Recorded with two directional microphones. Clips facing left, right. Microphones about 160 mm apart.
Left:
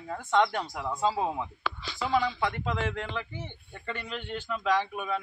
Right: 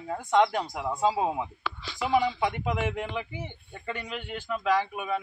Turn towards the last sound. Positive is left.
turn(degrees=-5)  # may be behind; listen again after turning